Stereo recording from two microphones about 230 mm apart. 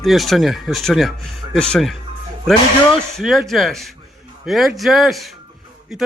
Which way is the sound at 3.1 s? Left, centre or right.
Centre.